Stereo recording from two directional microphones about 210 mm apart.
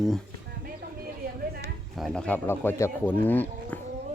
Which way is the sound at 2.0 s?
Centre (ahead or behind).